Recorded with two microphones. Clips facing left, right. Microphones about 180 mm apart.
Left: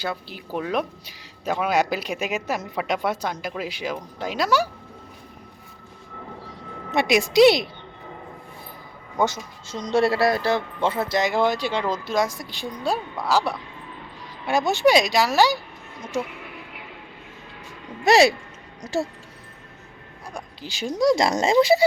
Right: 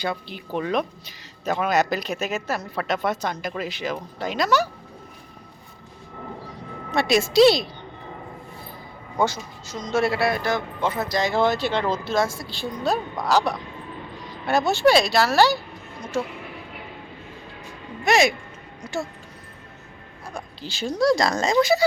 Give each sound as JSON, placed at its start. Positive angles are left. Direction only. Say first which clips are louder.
{"t": 0.0, "sound": "speech", "louder": "right 2 dB", "side_deg": 5}
{"t": 6.9, "sound": "speech", "louder": "even", "side_deg": 15}
{"t": 9.1, "sound": "speech", "louder": "even", "side_deg": 20}
{"t": 9.7, "sound": "speech", "louder": "left 2 dB", "side_deg": 35}
{"t": 18.0, "sound": "speech", "louder": "left 3 dB", "side_deg": 35}
{"t": 20.3, "sound": "speech", "louder": "right 1 dB", "side_deg": 15}